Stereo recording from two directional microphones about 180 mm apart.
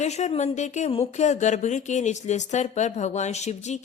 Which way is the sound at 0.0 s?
40° left (ahead or behind).